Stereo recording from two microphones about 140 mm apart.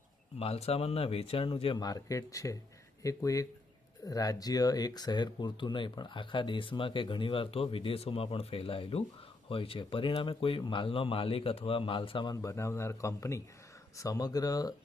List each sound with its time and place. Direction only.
0.3 s speech: 45° left (ahead or behind); by 14.7 s 25° left (ahead or behind)